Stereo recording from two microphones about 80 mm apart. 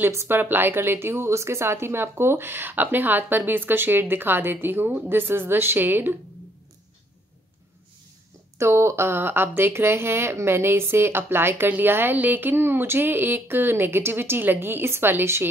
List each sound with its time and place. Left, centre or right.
0.1 s a woman's voice: right
0.4 s speech: right
8.5 s speech: right